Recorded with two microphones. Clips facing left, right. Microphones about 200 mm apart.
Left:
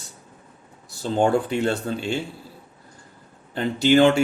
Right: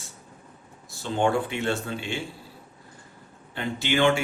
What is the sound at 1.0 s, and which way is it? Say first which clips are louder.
Speech: left 4 dB; 40° left (ahead or behind).